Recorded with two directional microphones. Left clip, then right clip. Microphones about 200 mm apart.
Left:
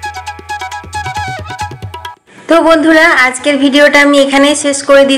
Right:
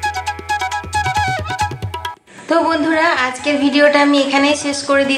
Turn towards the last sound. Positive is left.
turn(degrees=25)  # may be behind; listen again after turning